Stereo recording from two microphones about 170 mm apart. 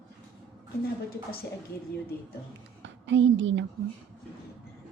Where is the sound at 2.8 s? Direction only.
90° right.